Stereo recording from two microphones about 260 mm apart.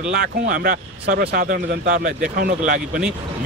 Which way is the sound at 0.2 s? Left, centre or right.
Right.